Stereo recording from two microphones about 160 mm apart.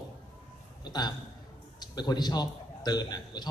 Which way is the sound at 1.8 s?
25° left (ahead or behind).